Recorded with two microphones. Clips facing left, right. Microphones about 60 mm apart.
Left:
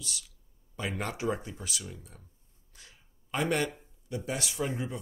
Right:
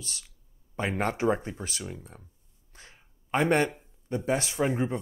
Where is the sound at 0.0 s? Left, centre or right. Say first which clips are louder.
Left 1 dB; right.